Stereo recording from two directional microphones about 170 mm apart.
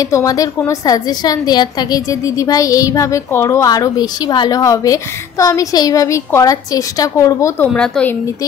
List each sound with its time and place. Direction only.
0.0 s a woman's voice: 20° left (ahead or behind)
7.7 s a woman's voice: 5° left (ahead or behind)